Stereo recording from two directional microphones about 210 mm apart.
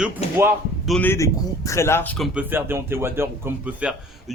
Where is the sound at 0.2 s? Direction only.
30° left (ahead or behind).